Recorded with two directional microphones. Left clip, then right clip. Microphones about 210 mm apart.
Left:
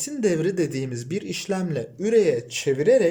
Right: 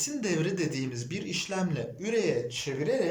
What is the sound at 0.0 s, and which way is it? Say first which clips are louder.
A man's voice: left 7 dB; 40° left (ahead or behind).